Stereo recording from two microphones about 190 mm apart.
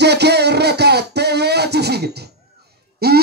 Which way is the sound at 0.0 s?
60° right (ahead or behind).